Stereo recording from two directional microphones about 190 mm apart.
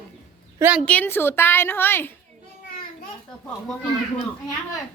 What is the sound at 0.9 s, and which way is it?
A woman's voice, 10° left (ahead or behind).